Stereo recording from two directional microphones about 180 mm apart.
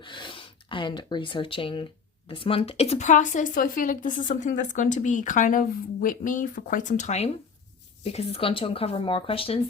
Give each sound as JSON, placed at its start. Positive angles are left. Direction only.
{"t": 0.0, "sound": "speech", "side_deg": 25}